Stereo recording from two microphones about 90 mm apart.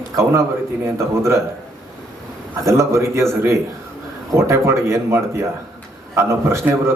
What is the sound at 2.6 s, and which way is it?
Speech, 30° right (ahead or behind).